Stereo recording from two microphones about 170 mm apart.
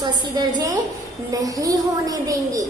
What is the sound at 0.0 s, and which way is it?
A woman's voice, 25° right (ahead or behind).